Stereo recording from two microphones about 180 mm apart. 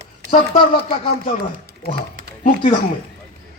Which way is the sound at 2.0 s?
55° right (ahead or behind).